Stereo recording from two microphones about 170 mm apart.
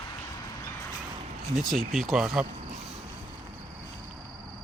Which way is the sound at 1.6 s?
Centre (ahead or behind).